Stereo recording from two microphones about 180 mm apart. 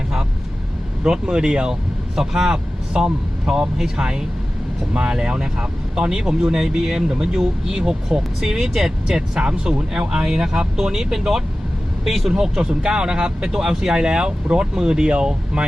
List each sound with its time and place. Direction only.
1.0 s speech: 5° right (ahead or behind)